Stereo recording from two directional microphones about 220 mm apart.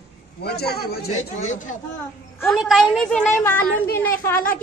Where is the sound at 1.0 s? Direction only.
30° left (ahead or behind).